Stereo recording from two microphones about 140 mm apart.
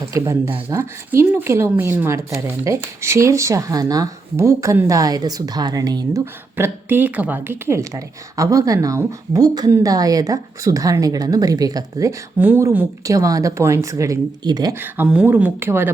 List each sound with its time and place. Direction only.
0.1 s a woman's voice: 20° right (ahead or behind)
6.6 s a woman's voice: 15° right (ahead or behind)
14.8 s speech: 10° right (ahead or behind)